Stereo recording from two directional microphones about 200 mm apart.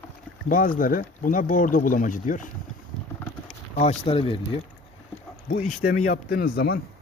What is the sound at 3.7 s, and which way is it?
Speech, 30° left (ahead or behind).